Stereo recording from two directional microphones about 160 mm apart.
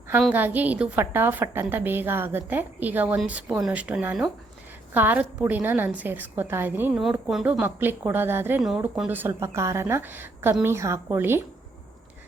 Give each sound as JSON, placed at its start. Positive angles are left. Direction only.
{"t": 0.2, "sound": "a woman's voice", "side_deg": -5}
{"t": 7.0, "sound": "a woman's voice", "side_deg": 0}
{"t": 8.6, "sound": "a woman's voice", "side_deg": -5}